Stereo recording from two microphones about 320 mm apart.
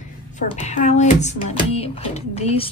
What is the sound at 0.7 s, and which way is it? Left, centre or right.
Speech, left.